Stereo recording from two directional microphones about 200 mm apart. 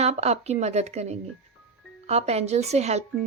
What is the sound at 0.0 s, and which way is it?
Speech, 35° right (ahead or behind).